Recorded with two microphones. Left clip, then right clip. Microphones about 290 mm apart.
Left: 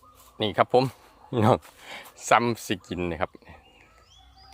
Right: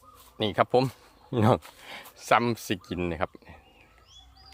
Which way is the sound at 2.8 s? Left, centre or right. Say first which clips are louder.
Left 1 dB; centre.